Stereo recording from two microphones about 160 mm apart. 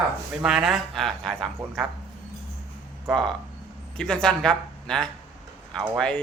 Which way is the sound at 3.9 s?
5° left (ahead or behind).